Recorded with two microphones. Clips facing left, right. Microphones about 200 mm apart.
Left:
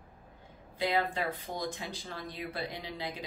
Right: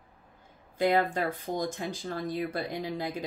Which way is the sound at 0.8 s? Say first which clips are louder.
Right 5 dB; 45° right (ahead or behind).